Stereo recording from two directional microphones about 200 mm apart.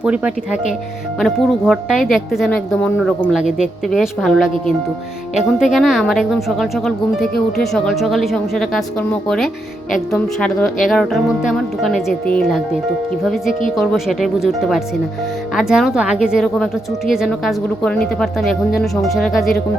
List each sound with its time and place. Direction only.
0.0 s speech: 5° right (ahead or behind)
15.5 s speech: centre (ahead or behind)